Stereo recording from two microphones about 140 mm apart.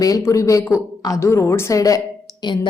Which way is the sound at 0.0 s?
25° left (ahead or behind).